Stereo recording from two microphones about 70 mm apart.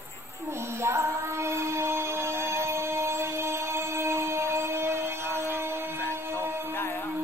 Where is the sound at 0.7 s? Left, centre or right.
Right.